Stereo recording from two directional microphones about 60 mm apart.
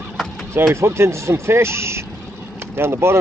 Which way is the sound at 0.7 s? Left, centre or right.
Right.